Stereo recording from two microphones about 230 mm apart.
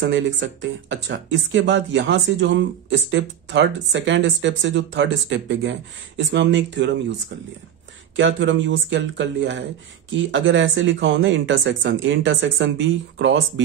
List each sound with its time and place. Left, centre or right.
0.0 s speech: right
8.2 s speech: right